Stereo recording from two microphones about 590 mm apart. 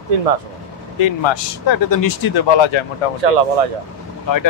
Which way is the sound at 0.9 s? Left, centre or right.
Left.